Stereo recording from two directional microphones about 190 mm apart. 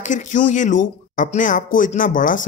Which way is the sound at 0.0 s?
40° left (ahead or behind).